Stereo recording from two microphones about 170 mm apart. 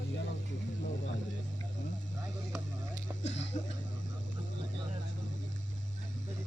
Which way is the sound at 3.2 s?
40° left (ahead or behind).